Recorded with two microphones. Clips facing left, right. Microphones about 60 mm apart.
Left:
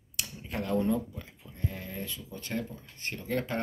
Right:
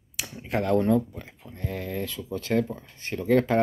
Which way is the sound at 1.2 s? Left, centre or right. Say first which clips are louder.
Right 1 dB; right.